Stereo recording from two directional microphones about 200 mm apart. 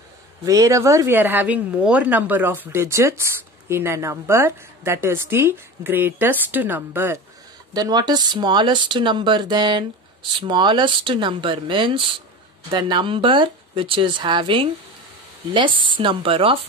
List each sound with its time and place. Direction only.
0.5 s speech: 15° right (ahead or behind)